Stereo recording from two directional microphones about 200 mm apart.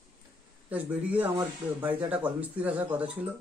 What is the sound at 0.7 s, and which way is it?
Speech, 10° right (ahead or behind).